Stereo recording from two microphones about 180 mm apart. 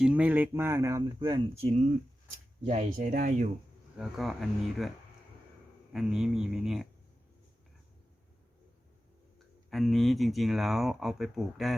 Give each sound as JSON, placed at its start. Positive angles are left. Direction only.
{"t": 0.0, "sound": "speech", "side_deg": -10}
{"t": 1.3, "sound": "speech", "side_deg": -35}
{"t": 3.9, "sound": "speech", "side_deg": 0}
{"t": 9.6, "sound": "speech", "side_deg": 0}